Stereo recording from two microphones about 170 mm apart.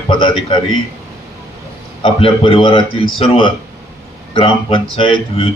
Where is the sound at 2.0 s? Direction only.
30° left (ahead or behind).